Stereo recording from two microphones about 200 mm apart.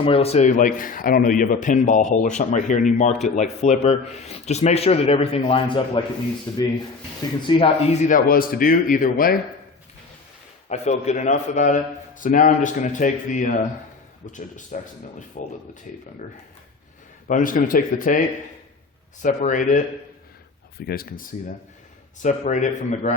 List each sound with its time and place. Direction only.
0.0 s a man's voice: 30° left (ahead or behind)
6.5 s speech: 15° left (ahead or behind)
8.0 s speech: 45° left (ahead or behind)
10.7 s a man's voice: 35° left (ahead or behind)
17.2 s a man's voice: 40° left (ahead or behind)
19.2 s a man's voice: 40° left (ahead or behind)
20.7 s speech: 50° left (ahead or behind)
22.2 s a man's voice: 40° left (ahead or behind)